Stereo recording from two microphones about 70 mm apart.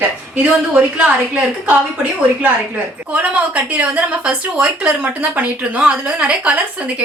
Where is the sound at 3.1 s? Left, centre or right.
Right.